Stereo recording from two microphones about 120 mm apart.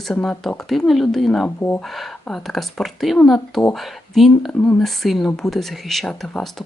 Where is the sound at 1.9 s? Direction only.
Centre (ahead or behind).